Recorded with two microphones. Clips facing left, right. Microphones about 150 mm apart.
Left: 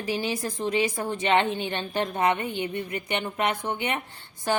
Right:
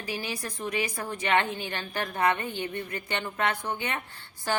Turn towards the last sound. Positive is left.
turn(degrees=20)  # may be behind; listen again after turning